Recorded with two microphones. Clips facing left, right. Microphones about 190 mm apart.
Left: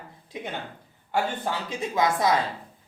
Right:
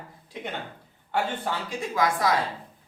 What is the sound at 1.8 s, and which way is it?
Speech, 20° left (ahead or behind).